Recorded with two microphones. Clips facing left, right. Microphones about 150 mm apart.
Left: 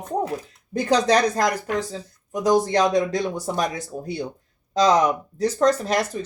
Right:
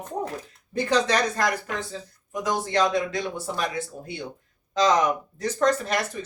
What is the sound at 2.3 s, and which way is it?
Speech, 40° left (ahead or behind).